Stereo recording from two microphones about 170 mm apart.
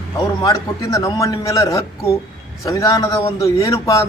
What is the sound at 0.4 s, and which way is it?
A man's voice, 20° left (ahead or behind).